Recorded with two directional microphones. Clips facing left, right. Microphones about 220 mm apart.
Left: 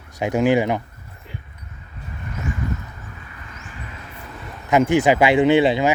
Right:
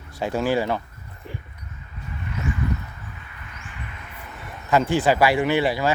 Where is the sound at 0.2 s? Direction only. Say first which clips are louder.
Left 5 dB; 15° left (ahead or behind).